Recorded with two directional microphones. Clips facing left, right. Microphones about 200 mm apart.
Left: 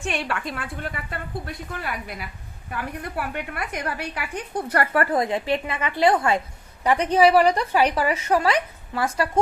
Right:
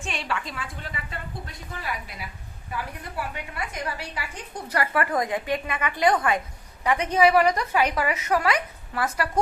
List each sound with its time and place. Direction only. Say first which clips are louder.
0.0 s a woman's voice: left 4 dB; 60° left (ahead or behind)
5.1 s a woman's voice: left 3 dB; 30° left (ahead or behind)